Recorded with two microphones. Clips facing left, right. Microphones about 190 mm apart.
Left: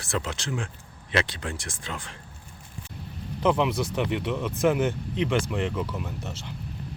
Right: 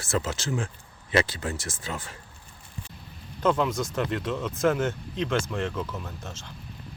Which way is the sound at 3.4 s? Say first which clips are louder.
Left 1 dB; 15° left (ahead or behind).